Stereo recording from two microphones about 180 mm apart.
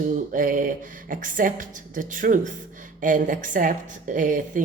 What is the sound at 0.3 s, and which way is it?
A woman's voice, 50° right (ahead or behind).